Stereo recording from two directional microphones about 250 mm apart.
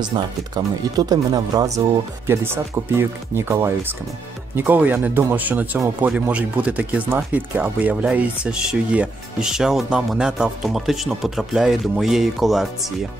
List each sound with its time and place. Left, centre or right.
0.9 s speech: centre